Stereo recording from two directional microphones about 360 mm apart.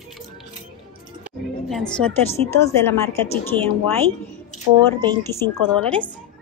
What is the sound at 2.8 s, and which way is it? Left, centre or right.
Speech, centre.